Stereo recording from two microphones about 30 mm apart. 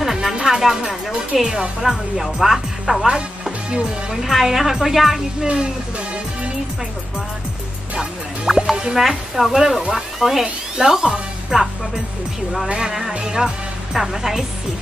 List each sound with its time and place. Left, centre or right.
0.0 s music: centre
1.0 s a woman's voice: centre
4.1 s a woman's voice: centre
8.5 s music: centre
8.7 s speech: right
9.0 s a woman's voice: centre
9.5 s a woman's voice: centre
12.8 s a woman's voice: centre
13.2 s speech: right
13.9 s a woman's voice: centre